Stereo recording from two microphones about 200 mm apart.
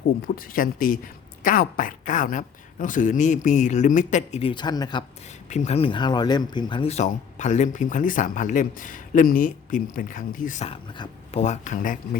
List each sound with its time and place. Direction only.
0.3 s speech: 45° left (ahead or behind); by 5.0 s 20° left (ahead or behind)
5.5 s speech: 35° left (ahead or behind)
10.9 s speech: 25° left (ahead or behind)